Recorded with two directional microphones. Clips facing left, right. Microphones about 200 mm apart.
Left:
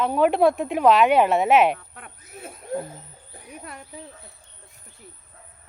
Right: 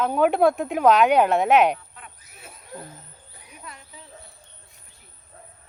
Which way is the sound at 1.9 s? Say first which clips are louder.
Left 5 dB; 55° left (ahead or behind).